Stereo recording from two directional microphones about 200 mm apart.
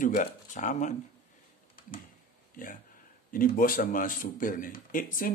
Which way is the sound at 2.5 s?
45° left (ahead or behind).